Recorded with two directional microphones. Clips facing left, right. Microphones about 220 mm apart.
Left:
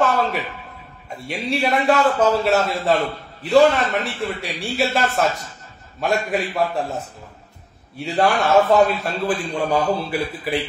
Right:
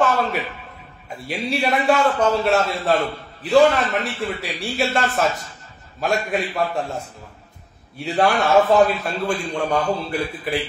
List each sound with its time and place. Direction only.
0.0 s a sound: centre (ahead or behind)
1.2 s a man's voice: centre (ahead or behind)
8.0 s a man's voice: centre (ahead or behind)